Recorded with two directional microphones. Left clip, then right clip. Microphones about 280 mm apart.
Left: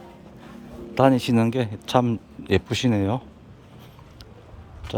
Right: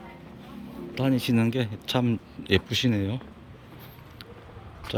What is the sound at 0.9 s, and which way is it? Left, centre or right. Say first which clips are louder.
Speech: left 8 dB; centre.